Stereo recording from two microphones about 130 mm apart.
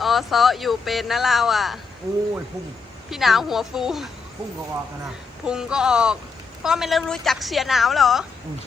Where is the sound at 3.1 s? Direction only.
Centre (ahead or behind).